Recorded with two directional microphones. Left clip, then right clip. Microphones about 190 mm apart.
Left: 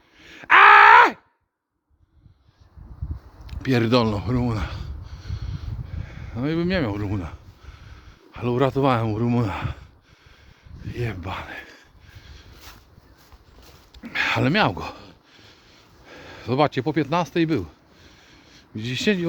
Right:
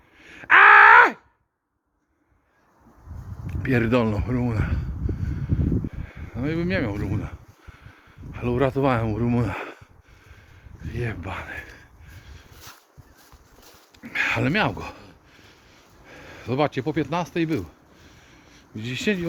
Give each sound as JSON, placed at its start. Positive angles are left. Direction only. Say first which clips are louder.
{"t": 0.2, "sound": "groan", "louder": "left 1 dB", "side_deg": 35}
{"t": 3.4, "sound": "speech", "louder": "left 1 dB", "side_deg": 25}
{"t": 5.9, "sound": "speech", "louder": "left 1 dB", "side_deg": 35}
{"t": 10.8, "sound": "speech", "louder": "left 1 dB", "side_deg": 20}
{"t": 14.0, "sound": "speech", "louder": "left 1 dB", "side_deg": 40}
{"t": 16.2, "sound": "speech", "louder": "left 3 dB", "side_deg": 40}
{"t": 18.3, "sound": "a sound", "louder": "left 2 dB", "side_deg": 40}